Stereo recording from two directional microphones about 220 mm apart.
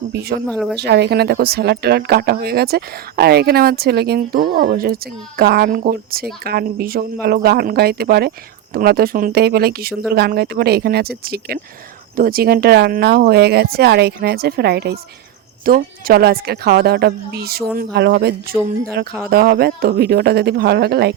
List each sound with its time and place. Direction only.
0.1 s speech: 45° right (ahead or behind)
0.4 s speech: 5° left (ahead or behind)
0.8 s speech: 50° right (ahead or behind)